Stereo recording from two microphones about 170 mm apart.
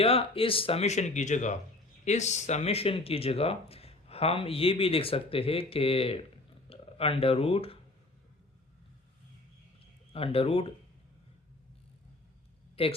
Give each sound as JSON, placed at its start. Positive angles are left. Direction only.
{"t": 0.0, "sound": "speech", "side_deg": 35}
{"t": 10.1, "sound": "speech", "side_deg": 35}
{"t": 12.8, "sound": "speech", "side_deg": 35}